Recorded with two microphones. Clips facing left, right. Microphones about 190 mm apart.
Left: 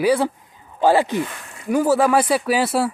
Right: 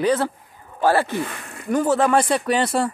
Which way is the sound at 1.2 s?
55° right (ahead or behind).